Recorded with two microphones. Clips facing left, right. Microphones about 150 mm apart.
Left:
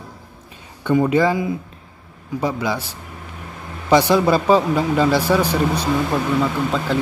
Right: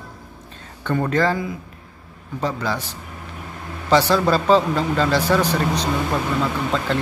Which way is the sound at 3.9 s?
15° left (ahead or behind).